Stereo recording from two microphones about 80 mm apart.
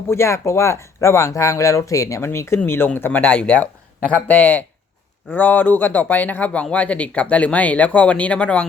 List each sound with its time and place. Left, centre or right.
0.1 s speech: left; by 8.6 s centre